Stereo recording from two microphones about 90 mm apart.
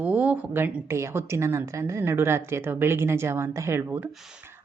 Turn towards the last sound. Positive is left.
turn(degrees=-25)  # may be behind; listen again after turning